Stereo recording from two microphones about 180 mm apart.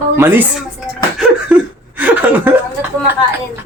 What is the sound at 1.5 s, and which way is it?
Speech, 5° right (ahead or behind).